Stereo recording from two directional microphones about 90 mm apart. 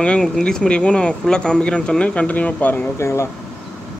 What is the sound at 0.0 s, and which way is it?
Speech, 10° left (ahead or behind).